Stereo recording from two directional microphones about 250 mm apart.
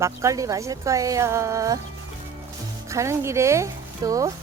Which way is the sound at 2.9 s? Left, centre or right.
Centre.